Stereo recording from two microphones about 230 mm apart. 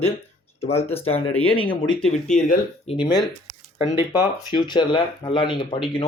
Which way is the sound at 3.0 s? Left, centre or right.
Centre.